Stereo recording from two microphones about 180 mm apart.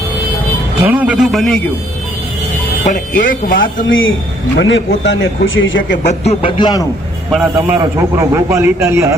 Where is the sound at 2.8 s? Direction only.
45° left (ahead or behind).